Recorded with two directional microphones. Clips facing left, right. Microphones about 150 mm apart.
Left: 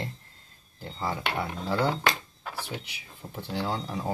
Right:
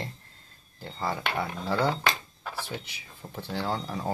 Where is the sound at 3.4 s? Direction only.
15° left (ahead or behind).